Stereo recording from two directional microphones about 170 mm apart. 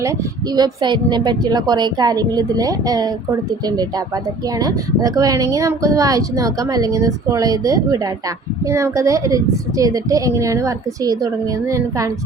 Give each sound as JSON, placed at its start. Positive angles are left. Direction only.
{"t": 0.0, "sound": "speech", "side_deg": -20}